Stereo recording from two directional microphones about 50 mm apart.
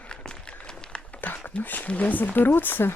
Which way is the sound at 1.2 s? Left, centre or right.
Left.